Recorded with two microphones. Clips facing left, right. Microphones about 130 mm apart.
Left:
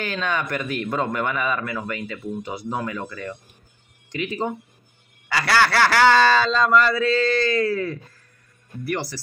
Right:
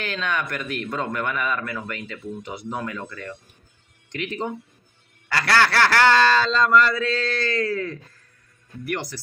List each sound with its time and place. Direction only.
0.0 s a man's voice: 10° left (ahead or behind)